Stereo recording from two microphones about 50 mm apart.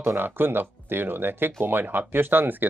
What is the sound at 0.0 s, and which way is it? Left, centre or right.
Speech, right.